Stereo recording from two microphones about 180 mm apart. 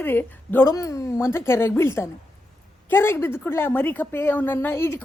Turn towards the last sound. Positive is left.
turn(degrees=15)  # may be behind; listen again after turning